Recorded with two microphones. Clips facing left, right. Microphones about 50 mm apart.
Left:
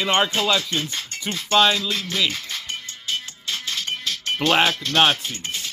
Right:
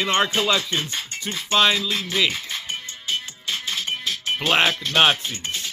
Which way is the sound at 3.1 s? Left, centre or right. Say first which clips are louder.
Right 1 dB; right.